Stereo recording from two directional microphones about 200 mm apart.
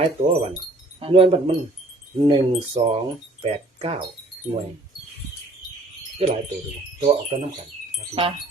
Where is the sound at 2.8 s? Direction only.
25° right (ahead or behind).